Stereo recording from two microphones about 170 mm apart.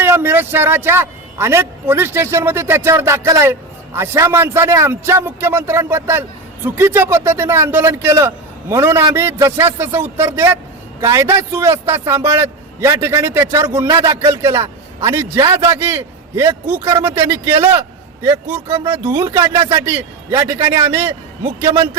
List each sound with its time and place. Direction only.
0.0 s a man's voice: 15° right (ahead or behind)